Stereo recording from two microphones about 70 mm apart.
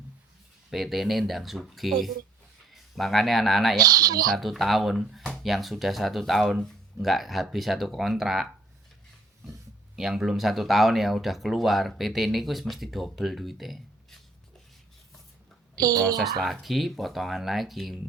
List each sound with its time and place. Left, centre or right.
0.7 s speech: centre
3.8 s speech: right
4.3 s speech: centre
9.5 s speech: centre
15.8 s speech: right
16.4 s speech: centre